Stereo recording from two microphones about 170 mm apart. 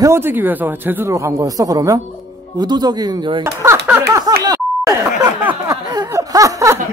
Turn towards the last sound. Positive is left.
turn(degrees=-20)  # may be behind; listen again after turning